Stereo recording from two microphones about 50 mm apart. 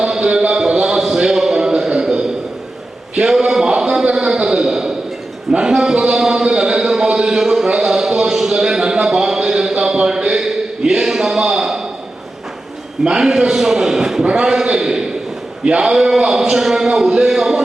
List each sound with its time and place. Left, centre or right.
0.0 s a sound: centre
5.5 s speech: centre
13.1 s speech: centre